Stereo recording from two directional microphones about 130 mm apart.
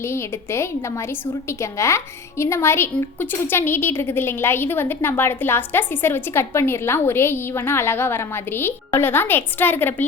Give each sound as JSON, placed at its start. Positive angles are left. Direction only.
{"t": 0.0, "sound": "a woman's voice", "side_deg": 20}